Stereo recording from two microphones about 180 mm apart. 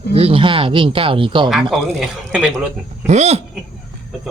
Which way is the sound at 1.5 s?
Centre (ahead or behind).